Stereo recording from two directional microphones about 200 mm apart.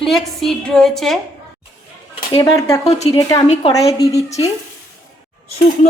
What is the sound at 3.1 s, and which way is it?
Speech, 15° left (ahead or behind).